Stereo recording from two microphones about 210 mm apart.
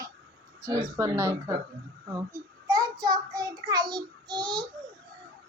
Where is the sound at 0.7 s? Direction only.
15° right (ahead or behind).